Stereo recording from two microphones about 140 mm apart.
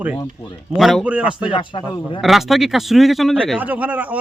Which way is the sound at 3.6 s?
10° right (ahead or behind).